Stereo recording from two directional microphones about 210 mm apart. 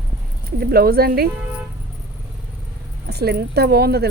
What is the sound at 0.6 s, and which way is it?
Speech, 45° right (ahead or behind).